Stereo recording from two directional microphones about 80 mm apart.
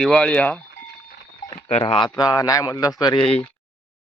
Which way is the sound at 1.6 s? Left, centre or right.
Left.